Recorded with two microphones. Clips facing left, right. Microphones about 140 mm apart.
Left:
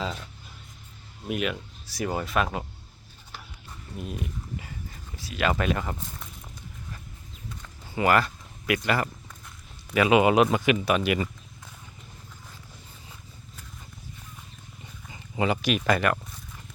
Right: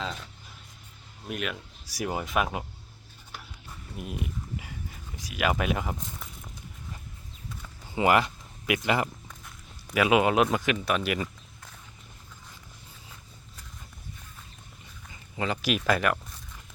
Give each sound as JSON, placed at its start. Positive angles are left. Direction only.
{"t": 1.3, "sound": "speech", "side_deg": 0}
{"t": 1.9, "sound": "speech", "side_deg": -10}
{"t": 3.9, "sound": "a sound", "side_deg": -15}
{"t": 5.1, "sound": "speech", "side_deg": -10}
{"t": 7.9, "sound": "speech", "side_deg": -15}
{"t": 9.9, "sound": "speech", "side_deg": -5}
{"t": 15.4, "sound": "speech", "side_deg": 15}
{"t": 15.9, "sound": "speech", "side_deg": 0}